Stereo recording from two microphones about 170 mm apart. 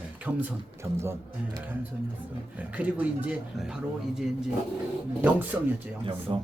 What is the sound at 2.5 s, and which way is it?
Speech, 10° right (ahead or behind).